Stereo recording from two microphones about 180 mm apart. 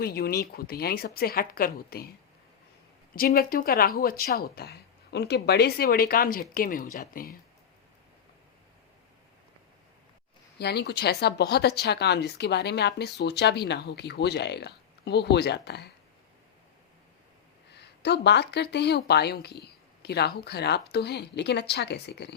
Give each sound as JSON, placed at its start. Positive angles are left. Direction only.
{"t": 0.0, "sound": "speech", "side_deg": 55}
{"t": 3.2, "sound": "speech", "side_deg": 55}
{"t": 10.6, "sound": "speech", "side_deg": 65}
{"t": 17.7, "sound": "speech", "side_deg": 65}